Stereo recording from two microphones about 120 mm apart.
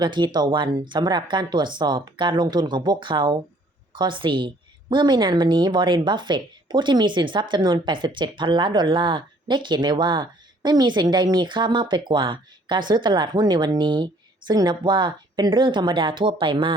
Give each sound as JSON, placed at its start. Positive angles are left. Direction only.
{"t": 0.0, "sound": "a woman's voice", "side_deg": -40}